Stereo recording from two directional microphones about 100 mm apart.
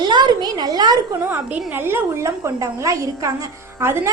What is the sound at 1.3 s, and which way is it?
A woman's voice, 25° right (ahead or behind).